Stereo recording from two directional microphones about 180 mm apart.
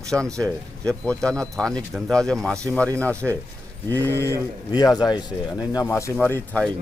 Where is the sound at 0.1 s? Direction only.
10° right (ahead or behind).